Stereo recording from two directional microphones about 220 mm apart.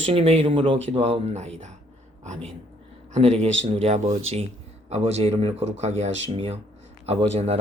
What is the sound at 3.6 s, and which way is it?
Speech, 30° right (ahead or behind).